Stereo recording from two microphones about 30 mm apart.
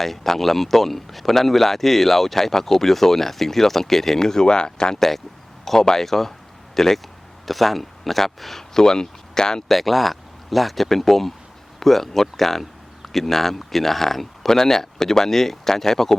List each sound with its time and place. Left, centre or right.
0.0 s speech: centre; by 4.9 s left
4.9 s speech: centre
8.7 s speech: left
9.6 s speech: centre